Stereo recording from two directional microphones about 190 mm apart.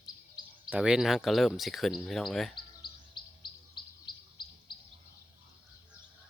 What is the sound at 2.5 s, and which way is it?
Bird, 25° left (ahead or behind).